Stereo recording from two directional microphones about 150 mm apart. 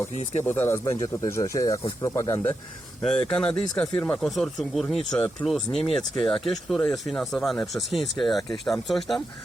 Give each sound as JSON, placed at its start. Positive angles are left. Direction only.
{"t": 0.4, "sound": "speech", "side_deg": 15}
{"t": 3.0, "sound": "speech", "side_deg": 5}